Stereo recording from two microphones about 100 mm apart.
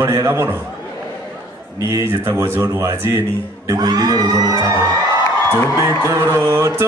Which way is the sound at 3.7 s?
40° right (ahead or behind).